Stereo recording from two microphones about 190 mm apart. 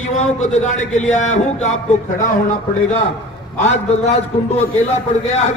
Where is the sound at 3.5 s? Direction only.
35° left (ahead or behind).